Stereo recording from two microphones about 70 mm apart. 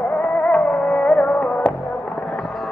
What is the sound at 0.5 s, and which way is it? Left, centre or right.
Music, centre.